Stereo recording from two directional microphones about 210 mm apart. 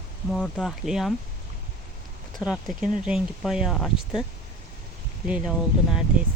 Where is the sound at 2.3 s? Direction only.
Centre (ahead or behind).